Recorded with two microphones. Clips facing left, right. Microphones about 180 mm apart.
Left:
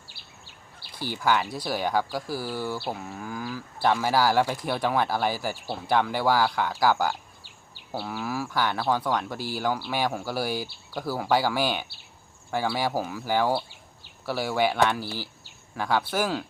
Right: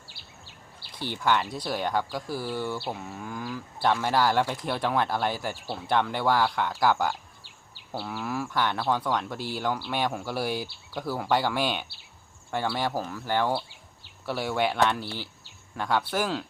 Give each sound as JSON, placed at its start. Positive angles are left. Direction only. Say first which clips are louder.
{"t": 0.9, "sound": "speech", "louder": "left 1 dB", "side_deg": 5}